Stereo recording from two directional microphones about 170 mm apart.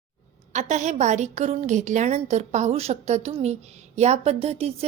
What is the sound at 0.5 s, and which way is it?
A woman's voice, 45° right (ahead or behind).